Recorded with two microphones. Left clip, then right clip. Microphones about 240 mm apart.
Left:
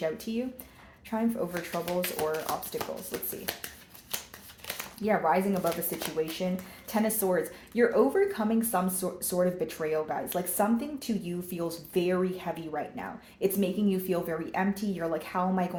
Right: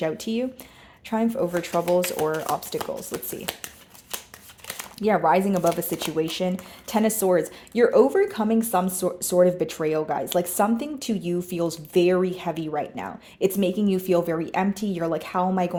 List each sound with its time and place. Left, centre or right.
0.0 s speech: right
2.7 s speech: right
4.9 s speech: right